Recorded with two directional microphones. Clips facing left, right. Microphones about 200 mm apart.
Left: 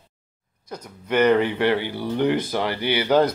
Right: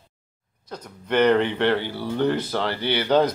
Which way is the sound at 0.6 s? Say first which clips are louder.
Left 1 dB; 10° left (ahead or behind).